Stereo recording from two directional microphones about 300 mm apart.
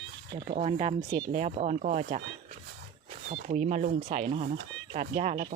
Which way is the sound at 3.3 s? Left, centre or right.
Right.